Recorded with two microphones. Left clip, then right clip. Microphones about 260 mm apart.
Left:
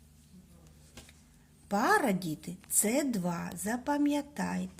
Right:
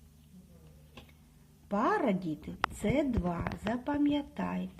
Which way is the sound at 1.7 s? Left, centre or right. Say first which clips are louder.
Left 2 dB; left.